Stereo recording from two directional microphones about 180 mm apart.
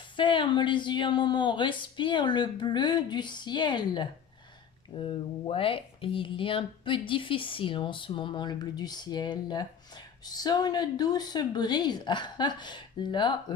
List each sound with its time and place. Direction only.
0.2 s speech: 25° left (ahead or behind)